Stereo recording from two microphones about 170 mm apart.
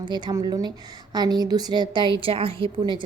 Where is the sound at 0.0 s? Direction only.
25° right (ahead or behind).